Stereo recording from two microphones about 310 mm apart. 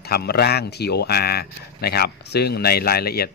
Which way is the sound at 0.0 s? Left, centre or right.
Left.